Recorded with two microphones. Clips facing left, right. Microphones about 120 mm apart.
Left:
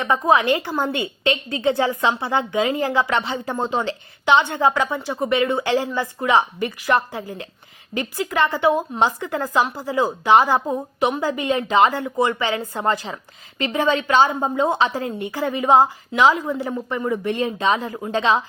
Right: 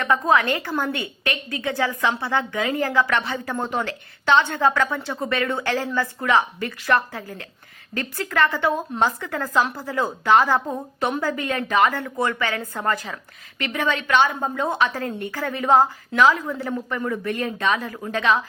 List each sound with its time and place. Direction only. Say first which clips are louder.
0.0 s a woman's voice: left 2 dB; 20° left (ahead or behind)
14.4 s a woman's voice: left 3 dB; 20° left (ahead or behind)